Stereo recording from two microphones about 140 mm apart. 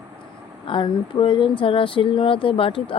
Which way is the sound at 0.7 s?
35° left (ahead or behind).